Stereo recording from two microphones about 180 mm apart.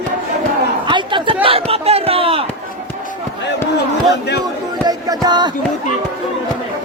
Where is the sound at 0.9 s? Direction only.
25° right (ahead or behind).